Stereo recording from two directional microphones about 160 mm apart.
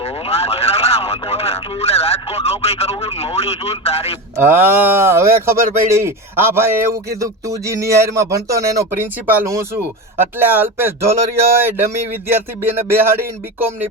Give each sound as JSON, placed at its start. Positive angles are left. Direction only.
{"t": 0.0, "sound": "speech", "side_deg": 40}
{"t": 4.4, "sound": "speech", "side_deg": -15}